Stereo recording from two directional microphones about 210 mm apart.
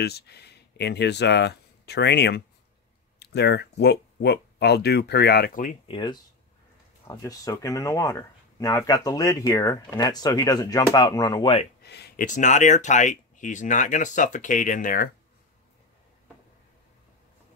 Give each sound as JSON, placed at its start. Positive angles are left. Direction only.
{"t": 0.0, "sound": "speech", "side_deg": 50}
{"t": 5.9, "sound": "speech", "side_deg": 25}
{"t": 11.8, "sound": "a sound", "side_deg": 50}
{"t": 12.3, "sound": "speech", "side_deg": 35}